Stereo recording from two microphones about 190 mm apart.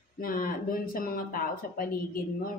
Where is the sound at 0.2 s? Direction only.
50° left (ahead or behind).